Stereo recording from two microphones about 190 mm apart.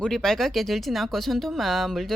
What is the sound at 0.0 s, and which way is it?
Speech, 5° left (ahead or behind).